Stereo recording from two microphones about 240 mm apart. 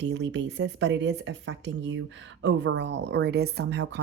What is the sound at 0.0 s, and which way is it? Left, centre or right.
Speech, right.